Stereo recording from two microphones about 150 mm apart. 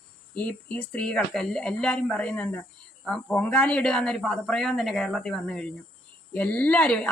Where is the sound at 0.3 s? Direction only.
10° left (ahead or behind).